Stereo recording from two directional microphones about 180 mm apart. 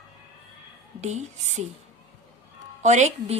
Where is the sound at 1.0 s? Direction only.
40° right (ahead or behind).